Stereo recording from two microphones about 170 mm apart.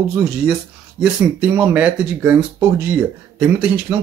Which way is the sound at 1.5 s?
10° right (ahead or behind).